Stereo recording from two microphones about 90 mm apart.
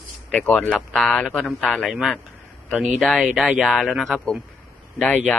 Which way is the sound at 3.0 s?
5° left (ahead or behind).